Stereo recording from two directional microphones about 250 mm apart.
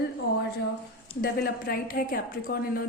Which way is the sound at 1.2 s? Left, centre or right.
Left.